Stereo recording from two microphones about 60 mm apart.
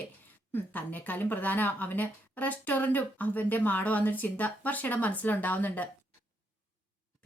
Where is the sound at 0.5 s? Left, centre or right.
Left.